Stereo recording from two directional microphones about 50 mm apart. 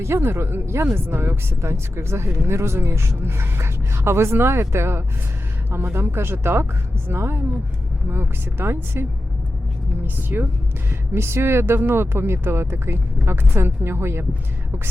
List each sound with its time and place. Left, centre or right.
0.0 s a woman's voice: right
11.1 s speech: right